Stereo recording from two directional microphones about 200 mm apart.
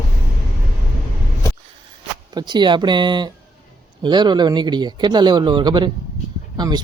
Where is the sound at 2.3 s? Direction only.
20° right (ahead or behind).